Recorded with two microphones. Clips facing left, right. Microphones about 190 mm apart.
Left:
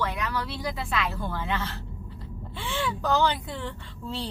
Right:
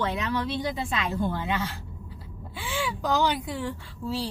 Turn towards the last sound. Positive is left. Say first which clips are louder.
# right 4 dB
turn(degrees=-10)  # may be behind; listen again after turning